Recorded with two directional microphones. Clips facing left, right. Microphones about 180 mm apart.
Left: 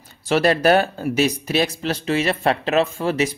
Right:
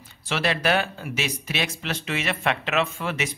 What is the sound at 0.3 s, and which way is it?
Speech, 40° left (ahead or behind).